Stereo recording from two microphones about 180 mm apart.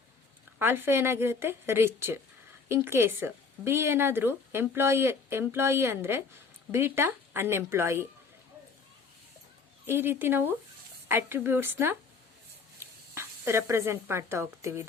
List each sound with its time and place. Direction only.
0.6 s speech: 10° right (ahead or behind)
9.8 s speech: 10° right (ahead or behind)
13.1 s speech: 15° right (ahead or behind)